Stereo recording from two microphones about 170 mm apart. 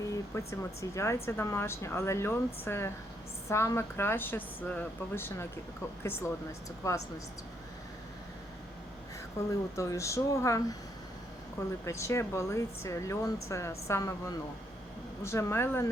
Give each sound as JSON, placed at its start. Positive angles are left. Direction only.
{"t": 0.1, "sound": "speech", "side_deg": 15}
{"t": 9.5, "sound": "speech", "side_deg": 20}
{"t": 11.9, "sound": "speech", "side_deg": 15}